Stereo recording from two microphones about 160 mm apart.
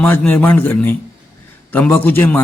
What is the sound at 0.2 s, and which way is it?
A man's voice, 10° left (ahead or behind).